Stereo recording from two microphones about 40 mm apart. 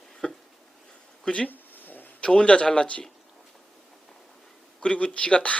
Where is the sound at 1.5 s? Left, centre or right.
Left.